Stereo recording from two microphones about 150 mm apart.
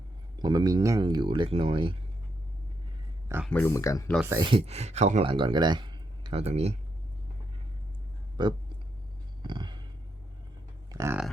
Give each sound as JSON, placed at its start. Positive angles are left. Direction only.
{"t": 0.3, "sound": "speech", "side_deg": -30}
{"t": 3.5, "sound": "speech", "side_deg": 15}
{"t": 4.4, "sound": "speech", "side_deg": -35}
{"t": 5.2, "sound": "speech", "side_deg": -35}
{"t": 6.4, "sound": "speech", "side_deg": -45}
{"t": 8.4, "sound": "speech", "side_deg": -30}
{"t": 9.4, "sound": "a sound", "side_deg": -30}
{"t": 10.9, "sound": "speech", "side_deg": -20}